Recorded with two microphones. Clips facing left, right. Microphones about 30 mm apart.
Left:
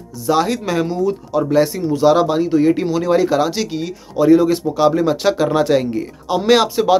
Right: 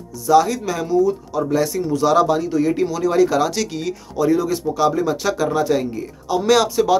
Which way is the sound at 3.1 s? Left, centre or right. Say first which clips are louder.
Left 2 dB; left.